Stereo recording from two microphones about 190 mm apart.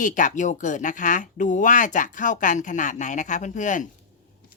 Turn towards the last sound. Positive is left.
turn(degrees=40)  # may be behind; listen again after turning